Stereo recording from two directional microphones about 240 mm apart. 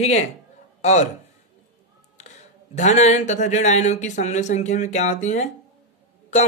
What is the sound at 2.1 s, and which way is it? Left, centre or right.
Speech, left.